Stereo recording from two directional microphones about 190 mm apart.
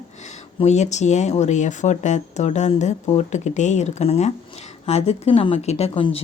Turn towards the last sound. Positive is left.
turn(degrees=30)  # may be behind; listen again after turning